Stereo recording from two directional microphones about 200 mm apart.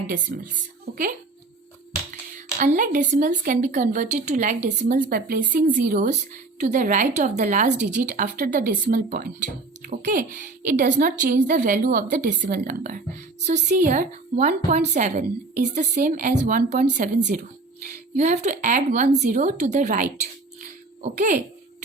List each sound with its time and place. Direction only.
0.3 s speech: 45° right (ahead or behind)
2.6 s speech: 40° right (ahead or behind)
20.6 s a sound: 35° right (ahead or behind)